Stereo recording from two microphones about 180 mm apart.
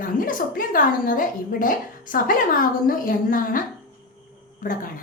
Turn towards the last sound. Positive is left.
turn(degrees=50)  # may be behind; listen again after turning